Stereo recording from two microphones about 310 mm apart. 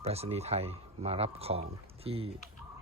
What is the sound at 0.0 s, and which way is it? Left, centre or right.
Speech, centre.